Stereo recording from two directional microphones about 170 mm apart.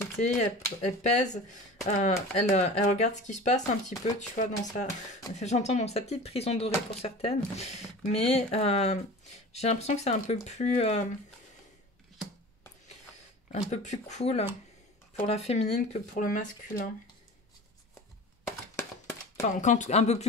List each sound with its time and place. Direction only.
0.2 s speech: 45° left (ahead or behind)
13.5 s speech: 40° left (ahead or behind)
18.8 s a sound: 15° left (ahead or behind)
19.4 s speech: 45° left (ahead or behind)